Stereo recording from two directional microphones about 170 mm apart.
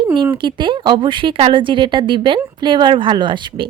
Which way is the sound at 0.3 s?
30° right (ahead or behind).